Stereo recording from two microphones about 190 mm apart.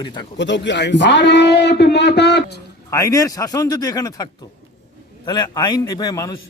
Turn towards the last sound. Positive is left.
turn(degrees=20)  # may be behind; listen again after turning